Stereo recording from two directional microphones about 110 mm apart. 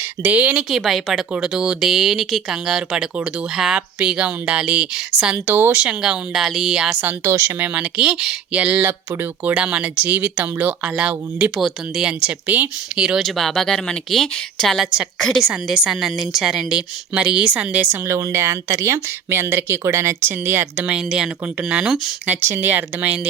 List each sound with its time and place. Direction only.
0.2 s speech: 15° right (ahead or behind)
0.7 s speech: centre (ahead or behind)
13.2 s speech: 5° left (ahead or behind)
18.1 s speech: 25° right (ahead or behind); by 21.9 s 5° right (ahead or behind)
22.3 s speech: 20° right (ahead or behind)